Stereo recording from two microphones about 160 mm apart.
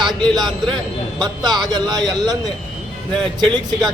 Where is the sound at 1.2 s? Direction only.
25° right (ahead or behind).